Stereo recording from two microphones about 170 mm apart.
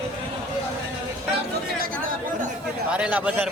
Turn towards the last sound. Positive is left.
turn(degrees=-10)  # may be behind; listen again after turning